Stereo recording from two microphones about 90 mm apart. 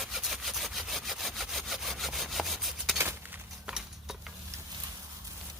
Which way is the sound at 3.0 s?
25° right (ahead or behind).